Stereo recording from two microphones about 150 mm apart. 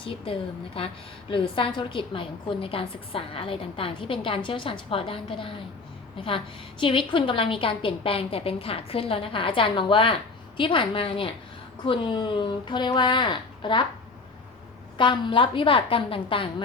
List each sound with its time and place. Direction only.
0.0 s a woman's voice: 35° left (ahead or behind)
14.9 s a woman's voice: 35° left (ahead or behind)